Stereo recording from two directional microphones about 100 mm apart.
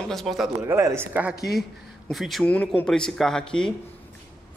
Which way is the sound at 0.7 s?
30° right (ahead or behind).